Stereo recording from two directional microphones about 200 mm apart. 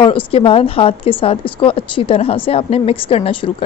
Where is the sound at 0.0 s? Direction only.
25° left (ahead or behind).